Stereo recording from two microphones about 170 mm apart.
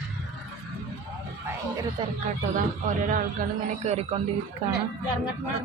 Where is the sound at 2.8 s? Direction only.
55° right (ahead or behind).